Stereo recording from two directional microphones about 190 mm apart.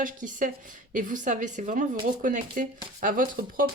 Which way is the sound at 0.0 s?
45° right (ahead or behind).